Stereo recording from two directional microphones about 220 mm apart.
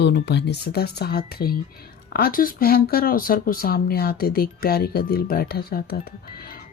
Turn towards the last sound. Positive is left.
turn(degrees=45)  # may be behind; listen again after turning